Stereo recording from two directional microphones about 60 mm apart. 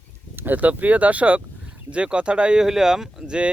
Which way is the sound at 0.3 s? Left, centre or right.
Right.